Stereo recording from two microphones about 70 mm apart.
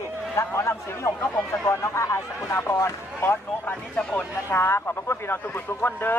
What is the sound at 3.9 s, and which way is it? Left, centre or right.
Speech, centre.